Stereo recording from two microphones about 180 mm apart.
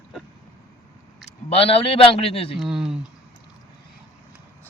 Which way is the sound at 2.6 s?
5° right (ahead or behind).